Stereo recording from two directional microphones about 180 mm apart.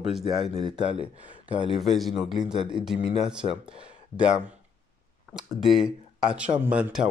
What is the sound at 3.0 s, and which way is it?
Speech, 40° left (ahead or behind).